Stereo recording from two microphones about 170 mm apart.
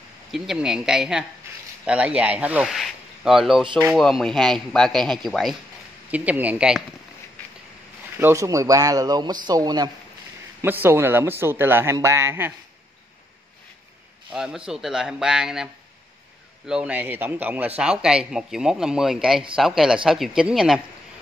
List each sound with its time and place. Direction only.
0.3 s a man's voice: 5° right (ahead or behind)
6.0 s speech: 10° right (ahead or behind)
8.2 s speech: 15° right (ahead or behind)
10.6 s speech: 10° right (ahead or behind)
14.3 s a man's voice: 5° right (ahead or behind)